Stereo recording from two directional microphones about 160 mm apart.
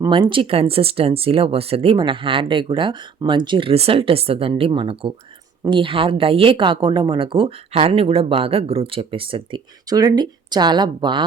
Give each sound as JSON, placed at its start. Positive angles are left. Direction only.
{"t": 0.0, "sound": "a woman's voice", "side_deg": -30}